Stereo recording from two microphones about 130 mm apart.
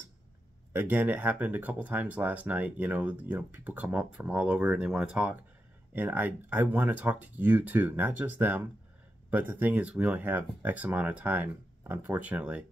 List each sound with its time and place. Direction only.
0.7 s speech: 15° right (ahead or behind)